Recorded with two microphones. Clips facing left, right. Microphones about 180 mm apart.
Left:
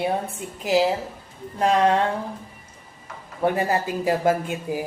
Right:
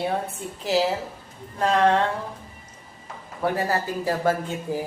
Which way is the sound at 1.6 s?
15° left (ahead or behind).